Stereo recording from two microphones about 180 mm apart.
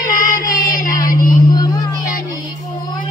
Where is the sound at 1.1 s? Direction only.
50° left (ahead or behind).